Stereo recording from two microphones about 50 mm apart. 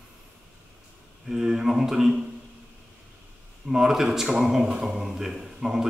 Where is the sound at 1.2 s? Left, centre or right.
Centre.